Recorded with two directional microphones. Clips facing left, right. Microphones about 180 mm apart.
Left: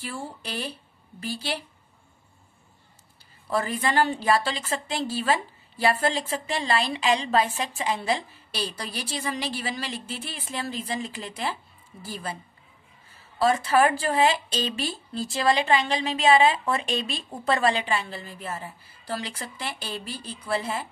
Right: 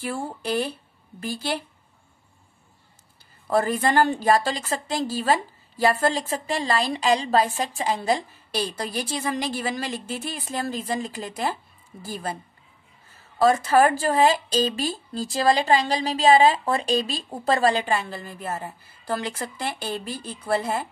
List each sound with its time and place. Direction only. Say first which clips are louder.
0.0 s a woman's voice: right 6 dB; 50° right (ahead or behind)
3.4 s a woman's voice: right 5 dB; 50° right (ahead or behind)
13.4 s speech: right 3 dB; 45° right (ahead or behind)